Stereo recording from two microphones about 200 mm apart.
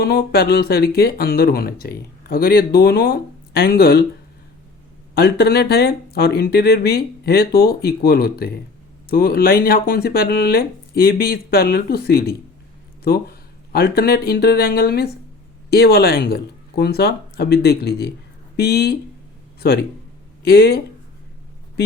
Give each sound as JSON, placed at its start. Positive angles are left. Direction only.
{"t": 0.0, "sound": "speech", "side_deg": 50}
{"t": 5.1, "sound": "speech", "side_deg": 55}